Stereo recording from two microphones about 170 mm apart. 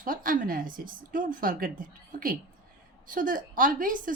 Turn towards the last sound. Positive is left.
turn(degrees=-50)  # may be behind; listen again after turning